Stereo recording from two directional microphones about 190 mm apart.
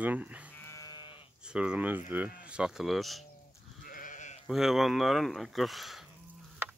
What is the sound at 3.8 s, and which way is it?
Sheep, 45° left (ahead or behind).